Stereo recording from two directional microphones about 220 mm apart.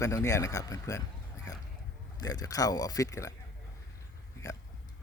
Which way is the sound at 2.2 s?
15° left (ahead or behind).